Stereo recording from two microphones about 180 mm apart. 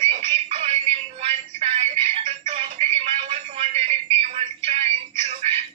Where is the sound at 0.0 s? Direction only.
30° right (ahead or behind).